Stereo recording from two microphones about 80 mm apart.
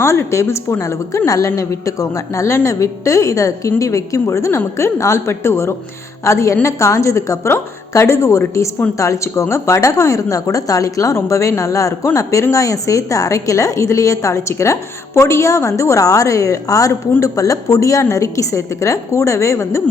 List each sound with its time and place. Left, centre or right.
0.0 s a woman's voice: left